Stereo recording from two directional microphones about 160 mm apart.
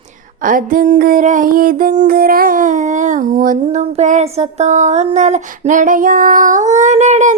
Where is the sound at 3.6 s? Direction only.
40° right (ahead or behind).